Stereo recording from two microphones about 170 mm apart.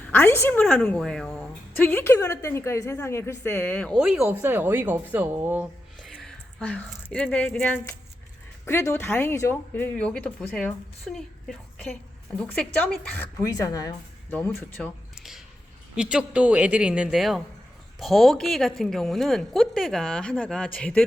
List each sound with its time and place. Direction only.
0.1 s a woman's voice: 10° left (ahead or behind)
4.2 s speech: 10° right (ahead or behind)
6.0 s a woman's voice: 5° left (ahead or behind)
13.4 s a woman's voice: 20° left (ahead or behind)
16.0 s speech: 5° right (ahead or behind)